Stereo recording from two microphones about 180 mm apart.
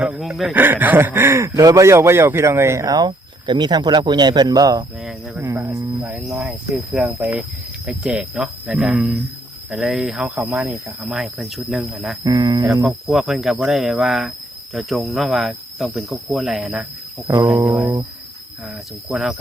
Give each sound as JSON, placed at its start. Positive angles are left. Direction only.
{"t": 0.0, "sound": "speech", "side_deg": -5}
{"t": 6.0, "sound": "cricket", "side_deg": -5}
{"t": 7.2, "sound": "speech", "side_deg": -10}
{"t": 7.9, "sound": "cricket", "side_deg": -5}
{"t": 12.2, "sound": "speech", "side_deg": -20}
{"t": 12.8, "sound": "cricket", "side_deg": 0}
{"t": 17.3, "sound": "speech", "side_deg": -15}
{"t": 17.7, "sound": "speech", "side_deg": -5}
{"t": 19.0, "sound": "cricket", "side_deg": 0}